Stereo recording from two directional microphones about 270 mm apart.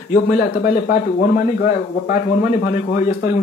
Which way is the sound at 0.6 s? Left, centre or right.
Left.